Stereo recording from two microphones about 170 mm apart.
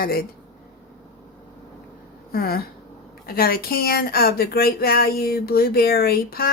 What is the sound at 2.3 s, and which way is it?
Speech, 60° left (ahead or behind).